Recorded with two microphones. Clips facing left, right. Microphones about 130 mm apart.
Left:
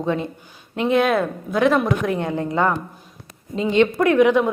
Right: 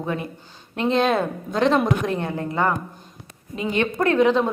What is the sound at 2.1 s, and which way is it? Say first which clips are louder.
A man's voice: left 3 dB; 15° left (ahead or behind).